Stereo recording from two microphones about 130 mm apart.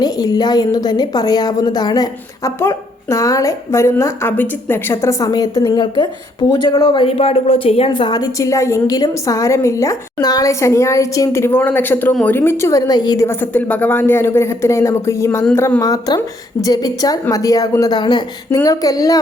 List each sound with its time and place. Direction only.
0.0 s a woman's voice: 30° left (ahead or behind)
13.2 s a woman's voice: 15° left (ahead or behind)